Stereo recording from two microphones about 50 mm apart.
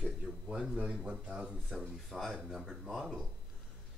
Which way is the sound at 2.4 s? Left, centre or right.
Centre.